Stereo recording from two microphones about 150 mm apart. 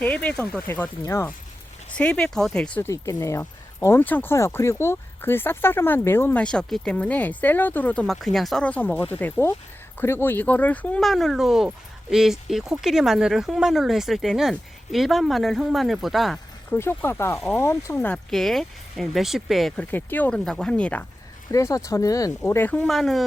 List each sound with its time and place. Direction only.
0.0 s speech: 10° left (ahead or behind)
2.9 s speech: 20° left (ahead or behind); by 16.4 s centre (ahead or behind)
16.7 s speech: 15° left (ahead or behind)
21.5 s speech: 20° left (ahead or behind)
22.8 s speech: centre (ahead or behind)